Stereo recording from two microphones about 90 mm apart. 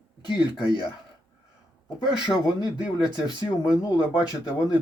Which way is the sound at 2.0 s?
50° left (ahead or behind).